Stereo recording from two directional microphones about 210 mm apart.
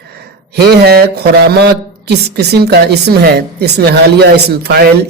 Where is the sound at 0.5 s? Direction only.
50° right (ahead or behind).